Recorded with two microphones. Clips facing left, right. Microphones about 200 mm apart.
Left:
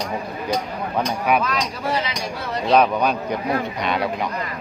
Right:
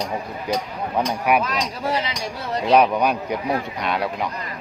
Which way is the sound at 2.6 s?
10° right (ahead or behind).